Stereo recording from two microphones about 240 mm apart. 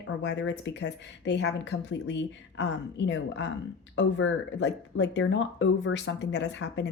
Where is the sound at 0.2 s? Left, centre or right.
Left.